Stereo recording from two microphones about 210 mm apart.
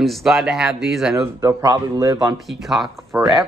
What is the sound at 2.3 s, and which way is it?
Speech, centre (ahead or behind).